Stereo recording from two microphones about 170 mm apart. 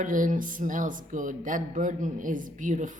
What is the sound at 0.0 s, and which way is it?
Speech, 50° right (ahead or behind).